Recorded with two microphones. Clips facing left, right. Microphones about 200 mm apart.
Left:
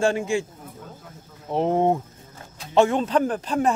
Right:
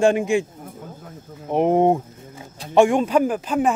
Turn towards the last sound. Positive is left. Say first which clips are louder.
# right 2 dB
turn(degrees=-5)  # may be behind; listen again after turning